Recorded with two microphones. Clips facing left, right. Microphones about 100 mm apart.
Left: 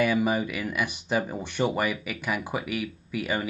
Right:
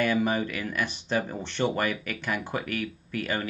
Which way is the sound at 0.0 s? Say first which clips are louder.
Left 1 dB; 10° left (ahead or behind).